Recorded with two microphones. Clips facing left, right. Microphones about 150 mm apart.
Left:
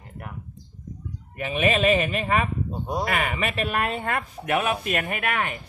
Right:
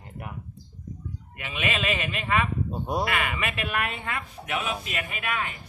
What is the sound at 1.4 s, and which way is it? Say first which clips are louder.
Speech: left 8 dB; 35° left (ahead or behind).